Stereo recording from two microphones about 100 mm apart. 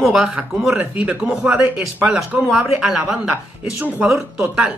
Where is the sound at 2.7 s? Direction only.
Centre (ahead or behind).